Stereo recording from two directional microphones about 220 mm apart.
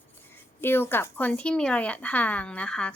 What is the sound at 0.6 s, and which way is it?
A woman's voice, 10° left (ahead or behind).